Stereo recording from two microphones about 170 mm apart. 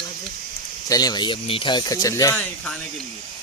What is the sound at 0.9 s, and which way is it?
Speech, 25° left (ahead or behind).